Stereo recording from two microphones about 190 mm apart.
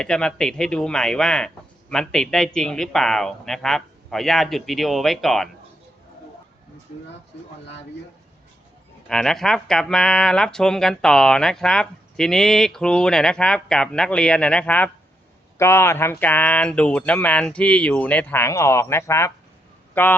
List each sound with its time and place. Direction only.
0.0 s speech: 5° left (ahead or behind)
9.0 s speech: 5° left (ahead or behind)